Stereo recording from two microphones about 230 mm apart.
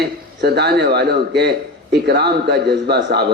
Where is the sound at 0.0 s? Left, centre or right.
Right.